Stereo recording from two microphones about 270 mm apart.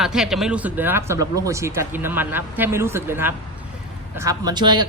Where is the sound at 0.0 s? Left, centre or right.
Centre.